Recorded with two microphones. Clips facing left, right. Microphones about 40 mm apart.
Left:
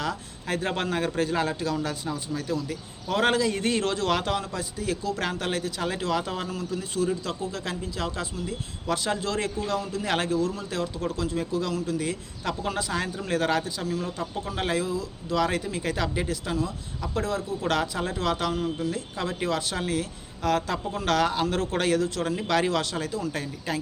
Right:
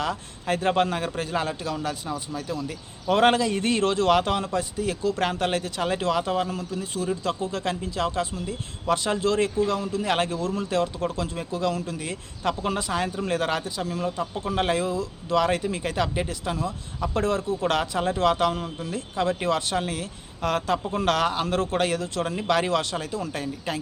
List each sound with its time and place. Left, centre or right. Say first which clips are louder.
0.0 s speech: right 3 dB; right
0.7 s a man's voice: right 5 dB; centre
2.6 s a man's voice: right 5 dB; right
6.1 s speech: right 5 dB; centre
6.5 s a man's voice: right 1 dB; right
10.2 s a man's voice: left 1 dB; right
17.6 s a man's voice: right 2 dB; right